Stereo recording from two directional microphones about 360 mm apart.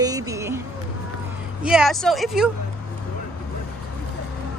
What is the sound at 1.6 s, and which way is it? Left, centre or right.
Speech, centre.